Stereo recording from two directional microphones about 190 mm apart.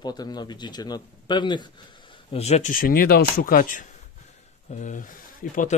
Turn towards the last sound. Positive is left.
turn(degrees=45)  # may be behind; listen again after turning